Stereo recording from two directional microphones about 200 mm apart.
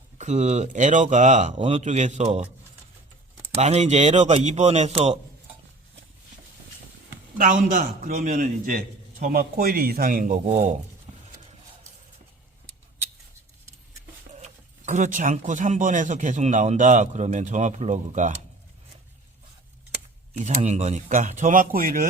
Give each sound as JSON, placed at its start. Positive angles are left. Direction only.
{"t": 0.2, "sound": "speech", "side_deg": -35}
{"t": 3.5, "sound": "speech", "side_deg": -35}
{"t": 7.3, "sound": "a man's voice", "side_deg": -40}
{"t": 14.8, "sound": "speech", "side_deg": -35}
{"t": 20.4, "sound": "speech", "side_deg": -35}